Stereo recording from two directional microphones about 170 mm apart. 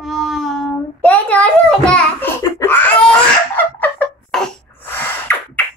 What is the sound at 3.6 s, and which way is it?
Sneeze, 10° left (ahead or behind).